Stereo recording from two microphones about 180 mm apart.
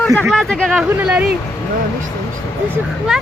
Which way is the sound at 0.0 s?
10° left (ahead or behind).